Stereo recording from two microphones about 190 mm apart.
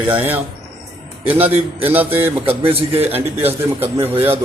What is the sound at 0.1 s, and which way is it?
A man's voice, 10° right (ahead or behind).